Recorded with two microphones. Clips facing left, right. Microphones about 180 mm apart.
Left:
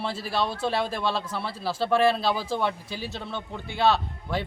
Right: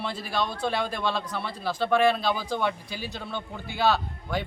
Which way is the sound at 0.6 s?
5° left (ahead or behind).